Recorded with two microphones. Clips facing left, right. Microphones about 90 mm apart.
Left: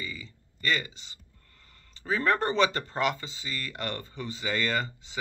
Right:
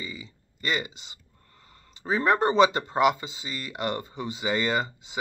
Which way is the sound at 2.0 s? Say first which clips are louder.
Right 4 dB; 20° right (ahead or behind).